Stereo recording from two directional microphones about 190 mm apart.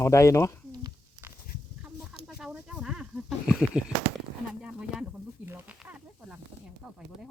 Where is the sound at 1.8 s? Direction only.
5° right (ahead or behind).